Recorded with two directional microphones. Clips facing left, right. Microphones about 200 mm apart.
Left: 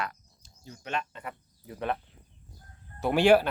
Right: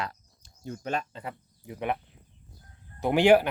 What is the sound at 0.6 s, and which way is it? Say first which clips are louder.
Speech: right 7 dB; 55° right (ahead or behind).